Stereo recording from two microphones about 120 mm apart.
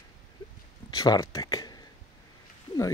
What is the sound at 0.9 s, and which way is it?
Speech, 30° left (ahead or behind).